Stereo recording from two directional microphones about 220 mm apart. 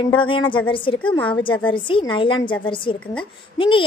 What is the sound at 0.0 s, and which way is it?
A woman's voice, 20° left (ahead or behind).